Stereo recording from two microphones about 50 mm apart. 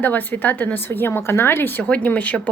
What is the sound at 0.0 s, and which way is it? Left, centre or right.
A woman's voice, left.